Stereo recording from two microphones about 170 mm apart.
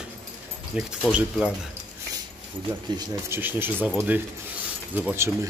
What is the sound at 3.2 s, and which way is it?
Speech, 10° right (ahead or behind).